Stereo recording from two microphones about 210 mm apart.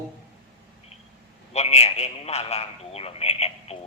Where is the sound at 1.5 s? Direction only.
30° left (ahead or behind).